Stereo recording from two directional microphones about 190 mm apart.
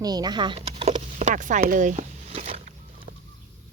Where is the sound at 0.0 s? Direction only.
20° right (ahead or behind).